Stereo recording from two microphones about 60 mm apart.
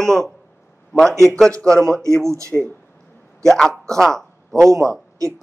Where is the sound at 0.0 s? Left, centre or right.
Centre.